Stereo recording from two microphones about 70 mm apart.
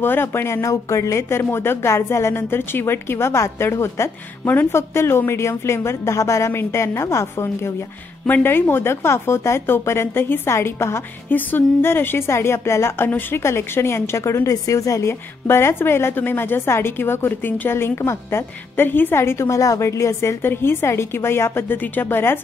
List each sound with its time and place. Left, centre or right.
0.0 s a woman's voice: left
8.3 s a woman's voice: left
15.4 s a woman's voice: left